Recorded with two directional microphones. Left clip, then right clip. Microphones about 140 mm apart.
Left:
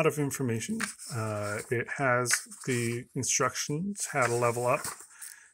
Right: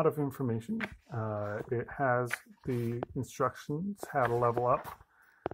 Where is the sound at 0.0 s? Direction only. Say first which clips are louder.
Left 2 dB; 30° left (ahead or behind).